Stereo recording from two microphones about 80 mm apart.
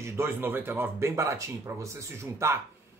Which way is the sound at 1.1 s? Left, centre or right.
Right.